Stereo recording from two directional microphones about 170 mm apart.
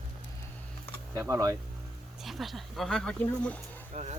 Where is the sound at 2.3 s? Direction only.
Centre (ahead or behind).